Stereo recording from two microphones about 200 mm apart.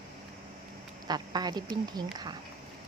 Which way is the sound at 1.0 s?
20° right (ahead or behind).